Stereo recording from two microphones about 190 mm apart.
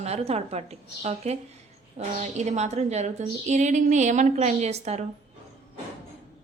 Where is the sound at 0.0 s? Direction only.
35° right (ahead or behind).